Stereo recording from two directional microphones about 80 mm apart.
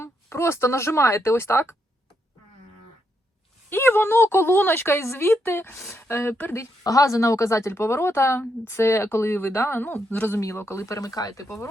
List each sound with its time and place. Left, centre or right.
0.0 s speech: left
3.7 s speech: left
6.8 s speech: left